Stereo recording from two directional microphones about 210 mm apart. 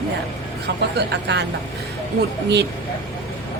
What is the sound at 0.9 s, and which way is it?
Speech, 55° right (ahead or behind).